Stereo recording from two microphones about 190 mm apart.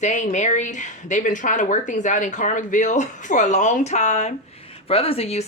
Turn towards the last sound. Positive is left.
turn(degrees=35)  # may be behind; listen again after turning